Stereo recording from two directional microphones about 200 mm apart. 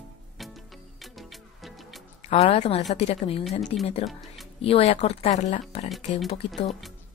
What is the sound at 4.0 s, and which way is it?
Speech, centre (ahead or behind).